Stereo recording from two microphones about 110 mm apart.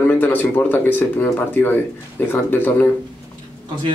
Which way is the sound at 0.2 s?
15° left (ahead or behind).